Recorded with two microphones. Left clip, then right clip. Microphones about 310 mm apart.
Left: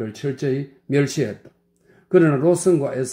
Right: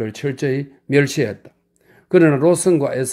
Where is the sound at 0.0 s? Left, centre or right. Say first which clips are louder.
Right 3 dB; right.